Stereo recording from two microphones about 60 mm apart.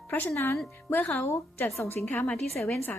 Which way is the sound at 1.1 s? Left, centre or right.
Left.